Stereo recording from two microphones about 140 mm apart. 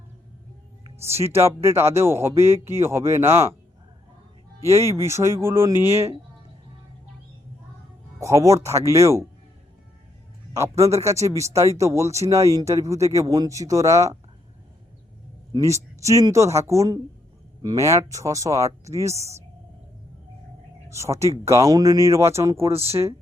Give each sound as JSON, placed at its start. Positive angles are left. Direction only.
{"t": 1.2, "sound": "speech", "side_deg": -20}
{"t": 4.6, "sound": "speech", "side_deg": -20}
{"t": 8.2, "sound": "speech", "side_deg": -20}
{"t": 10.5, "sound": "speech", "side_deg": -20}
{"t": 15.5, "sound": "speech", "side_deg": -20}
{"t": 19.1, "sound": "speech", "side_deg": -50}
{"t": 20.9, "sound": "speech", "side_deg": -20}
{"t": 22.7, "sound": "speech", "side_deg": -45}